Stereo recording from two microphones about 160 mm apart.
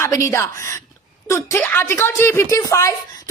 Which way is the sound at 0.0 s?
15° left (ahead or behind).